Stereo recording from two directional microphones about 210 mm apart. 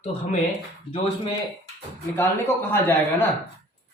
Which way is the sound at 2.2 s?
10° left (ahead or behind).